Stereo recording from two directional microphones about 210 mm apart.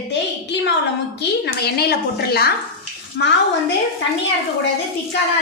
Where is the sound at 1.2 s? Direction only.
50° left (ahead or behind).